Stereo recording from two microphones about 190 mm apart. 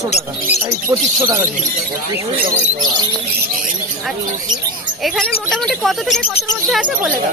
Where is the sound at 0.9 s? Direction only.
15° right (ahead or behind).